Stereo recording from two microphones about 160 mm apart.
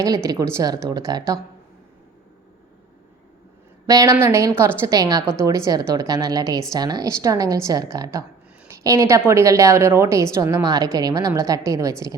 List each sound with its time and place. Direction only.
0.0 s a woman's voice: 20° right (ahead or behind)
3.8 s a woman's voice: 20° right (ahead or behind)